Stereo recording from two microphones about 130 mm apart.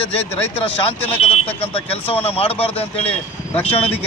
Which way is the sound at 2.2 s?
50° left (ahead or behind).